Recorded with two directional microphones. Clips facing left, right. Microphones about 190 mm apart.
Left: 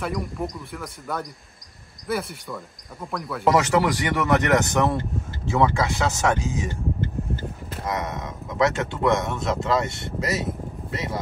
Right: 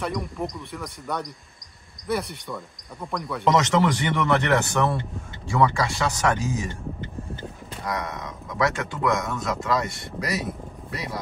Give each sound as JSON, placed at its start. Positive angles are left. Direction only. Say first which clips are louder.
{"t": 0.0, "sound": "speech", "louder": "left 1 dB", "side_deg": 0}
{"t": 7.2, "sound": "tick-tock", "louder": "left 5 dB", "side_deg": 20}
{"t": 7.8, "sound": "speech", "louder": "left 2 dB", "side_deg": 20}